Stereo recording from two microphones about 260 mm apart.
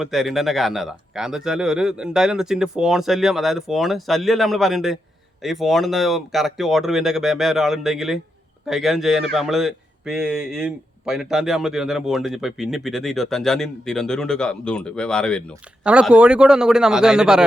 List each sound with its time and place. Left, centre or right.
0.0 s speech: centre